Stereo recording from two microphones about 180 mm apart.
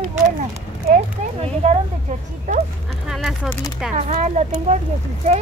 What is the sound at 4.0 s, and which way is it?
Speech, 40° right (ahead or behind).